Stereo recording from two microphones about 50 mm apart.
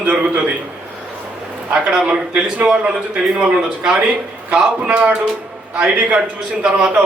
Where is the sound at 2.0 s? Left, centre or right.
Right.